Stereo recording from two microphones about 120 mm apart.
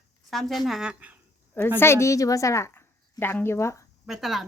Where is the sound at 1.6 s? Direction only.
15° left (ahead or behind).